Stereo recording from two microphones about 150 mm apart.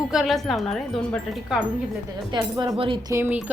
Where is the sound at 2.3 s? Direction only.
25° right (ahead or behind).